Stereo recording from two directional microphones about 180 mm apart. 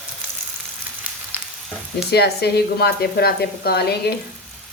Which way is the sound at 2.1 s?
65° left (ahead or behind).